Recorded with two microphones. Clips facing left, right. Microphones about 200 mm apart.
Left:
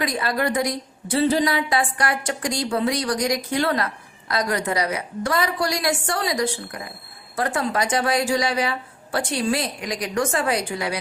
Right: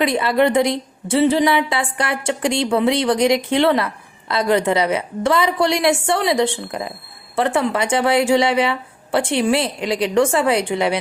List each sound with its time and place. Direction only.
0.0 s a woman's voice: 25° right (ahead or behind)